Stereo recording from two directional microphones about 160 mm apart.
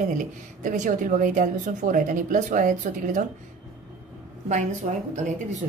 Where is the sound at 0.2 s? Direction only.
50° right (ahead or behind).